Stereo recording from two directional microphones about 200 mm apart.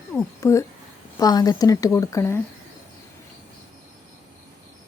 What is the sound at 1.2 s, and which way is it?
Speech, 20° left (ahead or behind).